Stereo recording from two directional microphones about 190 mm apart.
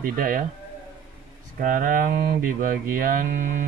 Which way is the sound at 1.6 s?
45° right (ahead or behind).